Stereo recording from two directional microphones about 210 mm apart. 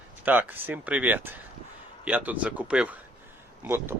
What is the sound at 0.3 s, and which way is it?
Speech, 10° right (ahead or behind).